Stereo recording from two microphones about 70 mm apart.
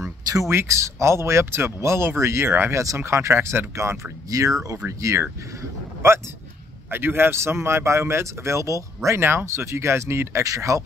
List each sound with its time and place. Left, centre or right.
0.5 s speech: right
2.7 s speech: right
6.9 s speech: right